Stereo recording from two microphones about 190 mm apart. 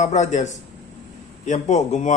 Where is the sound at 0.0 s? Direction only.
40° left (ahead or behind).